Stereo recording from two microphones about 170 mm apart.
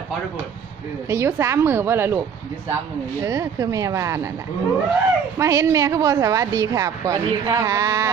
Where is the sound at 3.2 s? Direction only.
20° right (ahead or behind).